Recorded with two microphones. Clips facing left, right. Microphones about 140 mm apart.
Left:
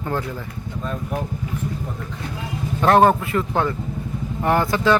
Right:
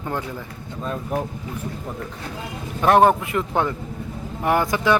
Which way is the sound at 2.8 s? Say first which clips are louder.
Even; 10° right (ahead or behind).